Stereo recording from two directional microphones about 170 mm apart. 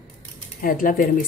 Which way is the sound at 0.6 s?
55° left (ahead or behind).